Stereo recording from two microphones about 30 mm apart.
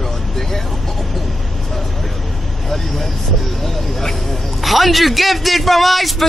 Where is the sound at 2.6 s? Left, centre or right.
Centre.